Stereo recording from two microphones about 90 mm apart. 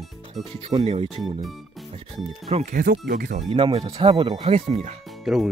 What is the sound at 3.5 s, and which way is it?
Speech, 70° right (ahead or behind).